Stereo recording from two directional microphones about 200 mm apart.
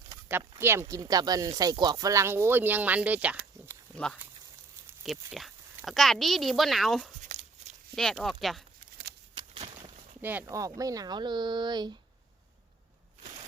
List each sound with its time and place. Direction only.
0.1 s a sound: 10° right (ahead or behind)
0.6 s speech: 10° right (ahead or behind)
3.9 s speech: 5° left (ahead or behind)
7.3 s a sound: 35° right (ahead or behind)
7.9 s speech: centre (ahead or behind)
9.3 s walk: 25° right (ahead or behind)
10.2 s speech: 10° right (ahead or behind)